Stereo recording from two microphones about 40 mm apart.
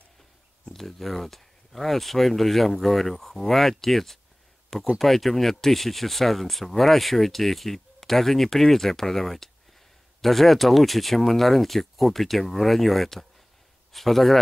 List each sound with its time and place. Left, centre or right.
0.7 s speech: centre